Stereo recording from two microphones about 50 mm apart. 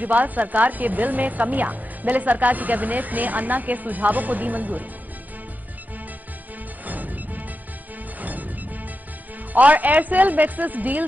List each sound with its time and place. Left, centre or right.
0.0 s a woman's voice: right
6.8 s music: right
9.5 s a woman's voice: right